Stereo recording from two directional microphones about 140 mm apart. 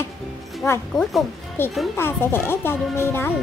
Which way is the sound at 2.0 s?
15° left (ahead or behind).